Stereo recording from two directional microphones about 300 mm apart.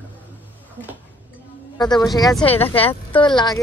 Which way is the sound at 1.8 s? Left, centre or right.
Centre.